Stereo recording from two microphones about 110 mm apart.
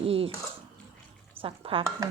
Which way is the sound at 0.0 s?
60° right (ahead or behind).